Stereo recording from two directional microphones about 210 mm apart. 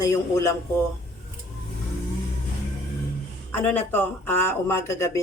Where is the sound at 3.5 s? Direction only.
10° left (ahead or behind).